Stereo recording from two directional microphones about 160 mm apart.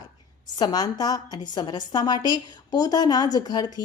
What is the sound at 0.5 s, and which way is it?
A woman's voice, 25° left (ahead or behind).